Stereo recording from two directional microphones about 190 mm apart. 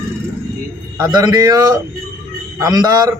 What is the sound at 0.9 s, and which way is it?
Speech, 15° right (ahead or behind).